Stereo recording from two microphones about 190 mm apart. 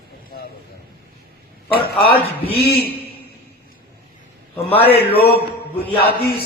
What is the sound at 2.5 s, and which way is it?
Speech, 55° left (ahead or behind).